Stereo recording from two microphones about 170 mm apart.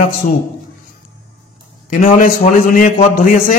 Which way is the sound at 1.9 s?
50° left (ahead or behind).